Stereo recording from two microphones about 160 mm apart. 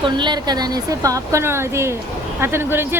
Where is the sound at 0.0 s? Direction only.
30° right (ahead or behind).